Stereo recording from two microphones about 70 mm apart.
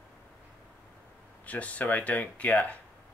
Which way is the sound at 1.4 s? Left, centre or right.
Centre.